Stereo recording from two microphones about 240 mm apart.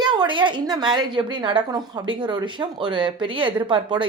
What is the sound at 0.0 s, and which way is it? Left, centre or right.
A woman's voice, centre.